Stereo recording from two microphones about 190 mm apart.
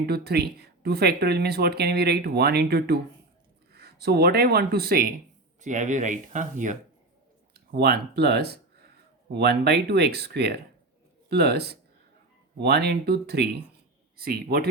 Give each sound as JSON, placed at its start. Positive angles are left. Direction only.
{"t": 0.0, "sound": "speech", "side_deg": -55}
{"t": 5.5, "sound": "speech", "side_deg": -40}
{"t": 7.5, "sound": "speech", "side_deg": -55}